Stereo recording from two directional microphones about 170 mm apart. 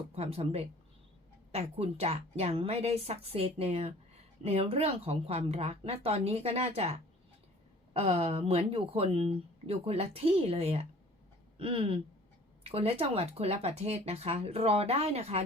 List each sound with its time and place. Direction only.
0.2 s a woman's voice: 35° right (ahead or behind)
7.9 s a woman's voice: 35° right (ahead or behind)
11.5 s a sound: 35° right (ahead or behind)
12.6 s a woman's voice: 35° right (ahead or behind)